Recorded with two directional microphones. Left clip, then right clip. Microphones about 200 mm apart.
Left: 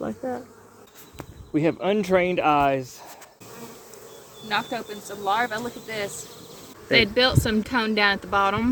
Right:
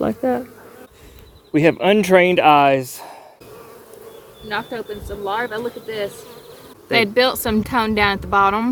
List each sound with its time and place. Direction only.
0.0 s bee: 45° right (ahead or behind)
1.5 s speech: 50° right (ahead or behind)
4.4 s speech: 5° left (ahead or behind)
6.9 s speech: 50° right (ahead or behind)